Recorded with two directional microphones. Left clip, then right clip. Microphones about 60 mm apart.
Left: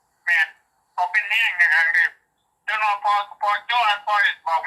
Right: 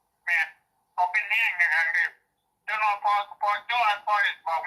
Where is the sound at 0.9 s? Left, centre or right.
Left.